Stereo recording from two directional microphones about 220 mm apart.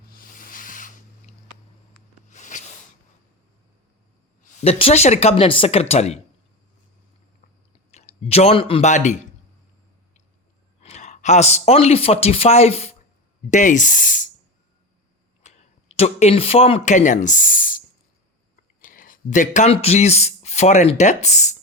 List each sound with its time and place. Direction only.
0.1 s rub: 40° left (ahead or behind)
2.3 s a sound: 35° left (ahead or behind)
4.4 s speech: 25° left (ahead or behind)
7.9 s speech: 30° left (ahead or behind)
10.8 s speech: 30° left (ahead or behind)
15.4 s speech: 30° left (ahead or behind)